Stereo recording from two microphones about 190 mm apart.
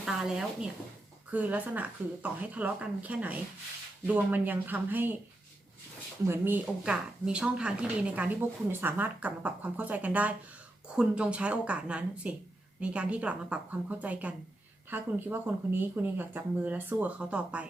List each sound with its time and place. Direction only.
0.0 s a woman's voice: 5° right (ahead or behind)
6.2 s a woman's voice: 10° right (ahead or behind)